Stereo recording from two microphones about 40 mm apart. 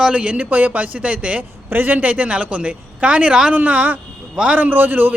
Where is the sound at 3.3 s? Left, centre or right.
Right.